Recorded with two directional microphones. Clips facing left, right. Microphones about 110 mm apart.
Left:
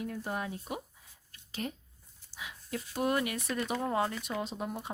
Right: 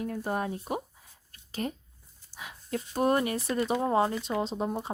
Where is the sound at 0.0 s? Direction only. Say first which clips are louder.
Right 5 dB; 45° right (ahead or behind).